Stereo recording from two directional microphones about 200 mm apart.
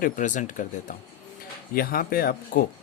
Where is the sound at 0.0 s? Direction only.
40° left (ahead or behind).